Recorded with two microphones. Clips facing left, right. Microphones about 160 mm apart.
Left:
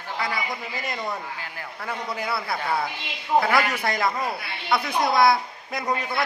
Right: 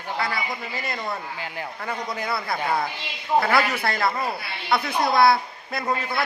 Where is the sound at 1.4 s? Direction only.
20° right (ahead or behind).